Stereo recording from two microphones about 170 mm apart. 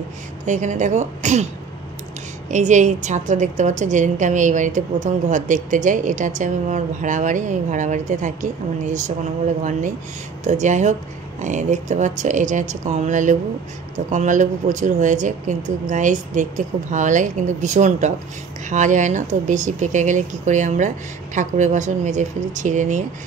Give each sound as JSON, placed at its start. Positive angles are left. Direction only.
{"t": 0.5, "sound": "a woman's voice", "side_deg": -45}
{"t": 2.5, "sound": "a woman's voice", "side_deg": -45}